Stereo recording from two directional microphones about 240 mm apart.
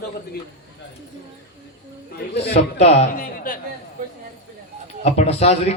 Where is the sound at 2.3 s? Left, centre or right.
Left.